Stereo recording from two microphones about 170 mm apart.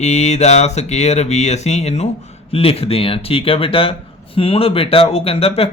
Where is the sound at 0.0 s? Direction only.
40° left (ahead or behind).